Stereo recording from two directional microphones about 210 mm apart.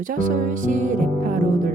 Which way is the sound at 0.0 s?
40° right (ahead or behind).